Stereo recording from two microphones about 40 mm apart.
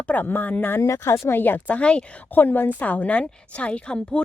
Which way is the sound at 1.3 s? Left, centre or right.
Left.